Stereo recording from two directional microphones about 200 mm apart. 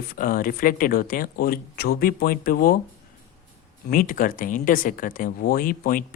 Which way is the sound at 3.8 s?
45° left (ahead or behind).